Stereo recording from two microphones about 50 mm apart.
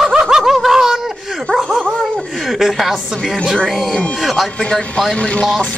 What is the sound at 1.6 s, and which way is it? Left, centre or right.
Speech, right.